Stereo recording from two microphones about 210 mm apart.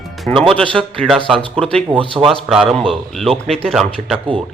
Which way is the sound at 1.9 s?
25° right (ahead or behind).